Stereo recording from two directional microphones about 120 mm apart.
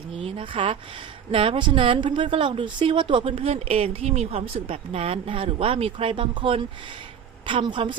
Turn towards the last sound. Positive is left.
turn(degrees=-40)  # may be behind; listen again after turning